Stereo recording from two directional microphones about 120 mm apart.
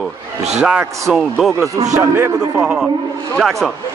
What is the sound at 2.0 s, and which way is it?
Speech, 25° right (ahead or behind).